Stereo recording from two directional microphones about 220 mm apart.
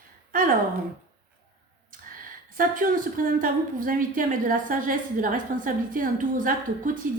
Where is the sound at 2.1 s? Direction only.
40° right (ahead or behind).